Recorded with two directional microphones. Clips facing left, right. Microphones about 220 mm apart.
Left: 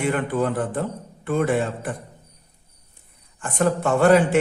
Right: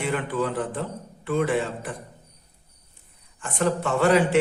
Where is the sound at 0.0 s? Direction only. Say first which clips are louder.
Left 4 dB; 50° left (ahead or behind).